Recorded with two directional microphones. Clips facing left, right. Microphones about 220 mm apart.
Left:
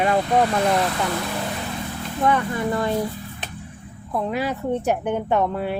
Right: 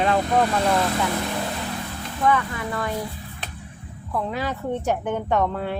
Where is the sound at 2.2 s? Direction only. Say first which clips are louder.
Left 2 dB; 30° left (ahead or behind).